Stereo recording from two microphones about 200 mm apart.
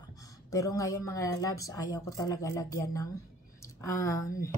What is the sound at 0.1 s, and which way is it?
Speech, 15° left (ahead or behind).